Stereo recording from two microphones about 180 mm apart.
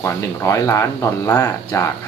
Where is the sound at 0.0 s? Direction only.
15° left (ahead or behind).